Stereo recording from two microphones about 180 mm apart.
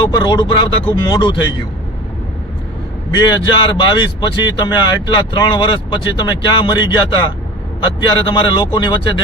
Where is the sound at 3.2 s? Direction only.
25° left (ahead or behind).